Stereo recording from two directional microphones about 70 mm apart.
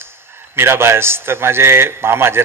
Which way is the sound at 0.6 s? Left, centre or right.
Right.